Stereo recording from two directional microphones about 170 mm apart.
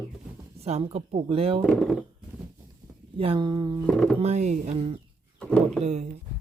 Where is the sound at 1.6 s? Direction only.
5° left (ahead or behind).